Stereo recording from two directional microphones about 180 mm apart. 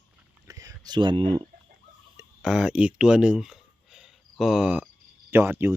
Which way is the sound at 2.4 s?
5° right (ahead or behind).